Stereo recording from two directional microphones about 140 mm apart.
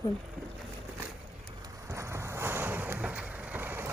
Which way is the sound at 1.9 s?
20° right (ahead or behind).